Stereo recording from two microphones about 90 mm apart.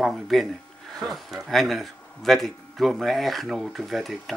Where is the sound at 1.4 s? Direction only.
Centre (ahead or behind).